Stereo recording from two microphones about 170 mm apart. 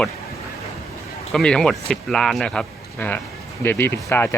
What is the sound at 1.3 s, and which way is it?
Speech, 5° left (ahead or behind).